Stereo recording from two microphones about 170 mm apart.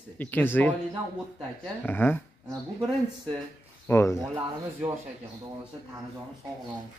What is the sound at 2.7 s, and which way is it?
Speech, 25° right (ahead or behind).